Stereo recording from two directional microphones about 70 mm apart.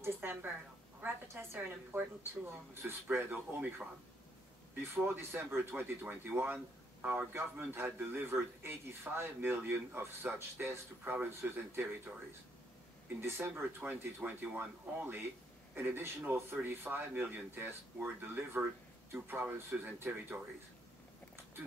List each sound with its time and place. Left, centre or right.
0.0 s a woman's voice: right
4.9 s speech: right
7.3 s a man's voice: right
13.2 s a man's voice: right